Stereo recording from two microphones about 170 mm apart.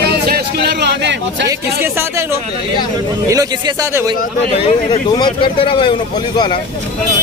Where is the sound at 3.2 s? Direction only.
20° right (ahead or behind).